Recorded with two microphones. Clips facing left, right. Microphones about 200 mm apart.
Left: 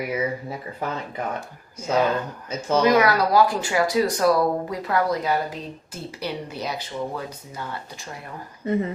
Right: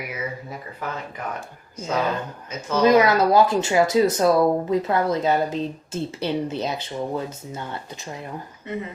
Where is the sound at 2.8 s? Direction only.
25° right (ahead or behind).